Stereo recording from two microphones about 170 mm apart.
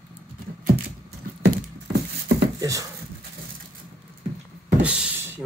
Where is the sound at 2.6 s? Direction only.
20° right (ahead or behind).